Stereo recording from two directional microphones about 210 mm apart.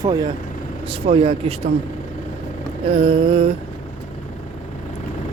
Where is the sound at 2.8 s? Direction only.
25° right (ahead or behind).